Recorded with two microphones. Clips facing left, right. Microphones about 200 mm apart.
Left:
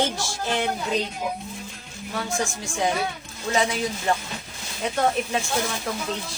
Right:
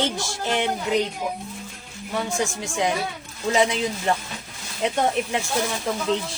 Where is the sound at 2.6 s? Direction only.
20° right (ahead or behind).